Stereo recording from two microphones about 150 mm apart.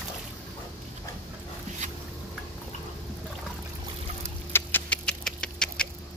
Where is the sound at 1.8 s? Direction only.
55° right (ahead or behind).